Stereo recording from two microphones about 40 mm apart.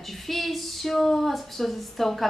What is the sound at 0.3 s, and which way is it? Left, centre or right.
Speech, centre.